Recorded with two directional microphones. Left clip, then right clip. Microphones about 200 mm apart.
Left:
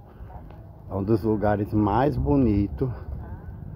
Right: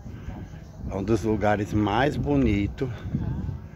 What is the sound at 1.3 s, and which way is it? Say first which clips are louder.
Speech: even; 25° left (ahead or behind).